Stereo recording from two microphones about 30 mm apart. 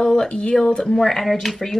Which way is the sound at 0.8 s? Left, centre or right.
Centre.